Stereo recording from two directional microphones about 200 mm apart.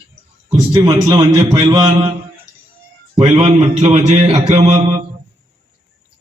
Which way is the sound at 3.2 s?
30° right (ahead or behind).